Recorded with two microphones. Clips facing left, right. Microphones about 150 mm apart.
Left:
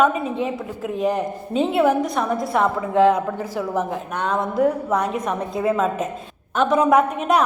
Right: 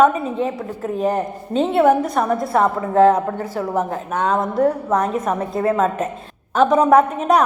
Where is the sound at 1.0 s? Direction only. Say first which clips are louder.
Right 1 dB; 35° right (ahead or behind).